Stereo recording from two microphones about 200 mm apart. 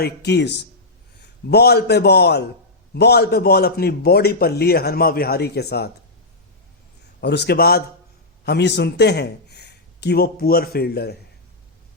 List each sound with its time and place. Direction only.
0.0 s a man's voice: 55° left (ahead or behind)
7.2 s a man's voice: 55° left (ahead or behind)